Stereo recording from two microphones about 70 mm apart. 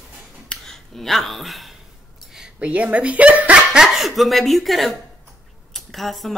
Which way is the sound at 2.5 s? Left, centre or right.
Centre.